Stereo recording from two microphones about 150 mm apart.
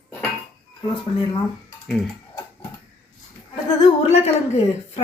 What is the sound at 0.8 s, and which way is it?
Speech, 30° left (ahead or behind).